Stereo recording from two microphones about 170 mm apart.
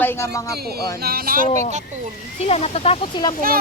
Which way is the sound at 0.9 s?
65° right (ahead or behind).